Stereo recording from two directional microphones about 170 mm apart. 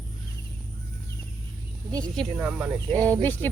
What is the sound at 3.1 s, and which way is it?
Speech, 10° left (ahead or behind).